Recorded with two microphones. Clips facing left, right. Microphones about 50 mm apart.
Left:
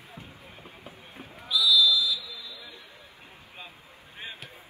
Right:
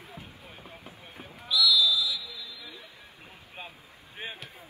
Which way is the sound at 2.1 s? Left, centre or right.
Left.